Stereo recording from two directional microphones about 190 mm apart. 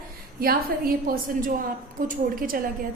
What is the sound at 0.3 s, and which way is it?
A woman's voice, 50° right (ahead or behind).